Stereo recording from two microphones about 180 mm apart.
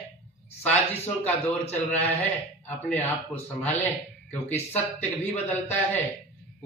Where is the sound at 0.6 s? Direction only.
10° left (ahead or behind).